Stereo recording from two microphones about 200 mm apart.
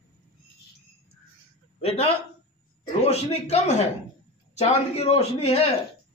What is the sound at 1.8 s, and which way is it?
A man's voice, 30° left (ahead or behind).